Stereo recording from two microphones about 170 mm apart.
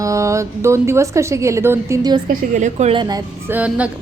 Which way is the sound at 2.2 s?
50° right (ahead or behind).